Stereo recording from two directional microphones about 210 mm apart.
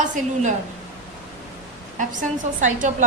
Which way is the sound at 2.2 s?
35° right (ahead or behind).